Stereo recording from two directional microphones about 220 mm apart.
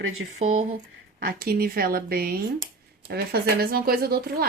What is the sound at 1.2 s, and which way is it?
Speech, 40° right (ahead or behind).